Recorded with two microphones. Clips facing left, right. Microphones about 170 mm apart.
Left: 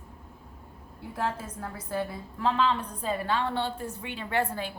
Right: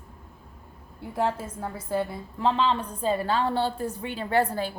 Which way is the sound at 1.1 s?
30° right (ahead or behind).